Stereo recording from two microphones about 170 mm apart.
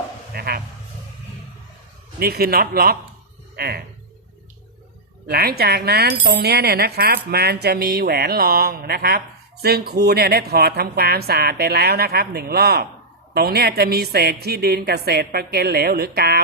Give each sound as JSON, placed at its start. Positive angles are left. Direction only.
{"t": 0.3, "sound": "sheep", "side_deg": -65}
{"t": 2.1, "sound": "a man's voice", "side_deg": -65}
{"t": 5.3, "sound": "speech", "side_deg": -65}